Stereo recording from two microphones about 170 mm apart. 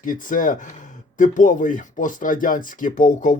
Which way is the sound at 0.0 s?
50° left (ahead or behind).